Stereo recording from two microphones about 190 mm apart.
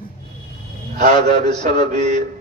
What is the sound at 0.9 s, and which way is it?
A man's voice, 40° right (ahead or behind).